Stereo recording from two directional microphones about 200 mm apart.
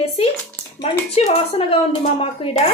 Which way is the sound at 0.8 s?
30° left (ahead or behind).